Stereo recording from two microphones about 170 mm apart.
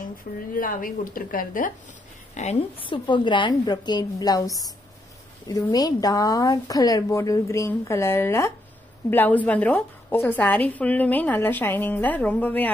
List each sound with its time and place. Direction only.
0.2 s a woman's voice: 55° left (ahead or behind)
2.8 s a woman's voice: 30° left (ahead or behind); by 12.7 s 10° left (ahead or behind)